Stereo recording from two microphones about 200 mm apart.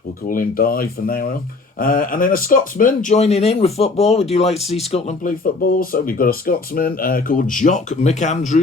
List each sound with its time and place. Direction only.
0.3 s speech: 45° left (ahead or behind)